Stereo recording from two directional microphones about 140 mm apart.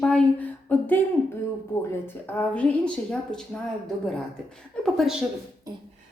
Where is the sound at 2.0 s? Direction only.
10° left (ahead or behind).